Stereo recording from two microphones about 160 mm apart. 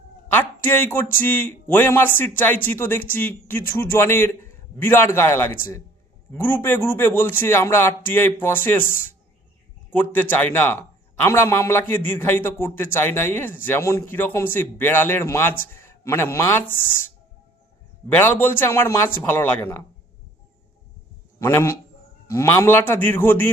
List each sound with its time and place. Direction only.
0.3 s a man's voice: 10° left (ahead or behind)
18.1 s a man's voice: 10° left (ahead or behind)
21.3 s a man's voice: 15° left (ahead or behind)